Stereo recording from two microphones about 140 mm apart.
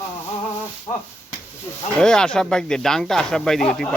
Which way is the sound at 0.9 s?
35° left (ahead or behind).